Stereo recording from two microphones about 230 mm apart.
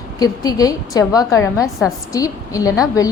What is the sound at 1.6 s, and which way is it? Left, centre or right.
Speech, centre.